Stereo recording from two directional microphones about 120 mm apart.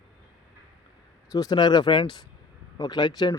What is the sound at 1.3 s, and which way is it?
Speech, 35° left (ahead or behind).